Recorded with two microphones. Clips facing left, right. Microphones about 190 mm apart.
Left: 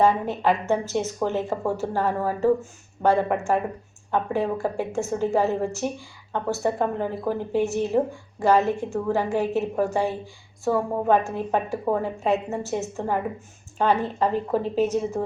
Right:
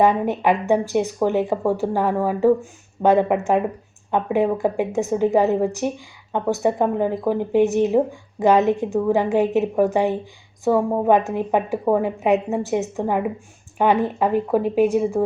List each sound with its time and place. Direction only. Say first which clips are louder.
0.0 s a woman's voice: right 3 dB; 15° right (ahead or behind)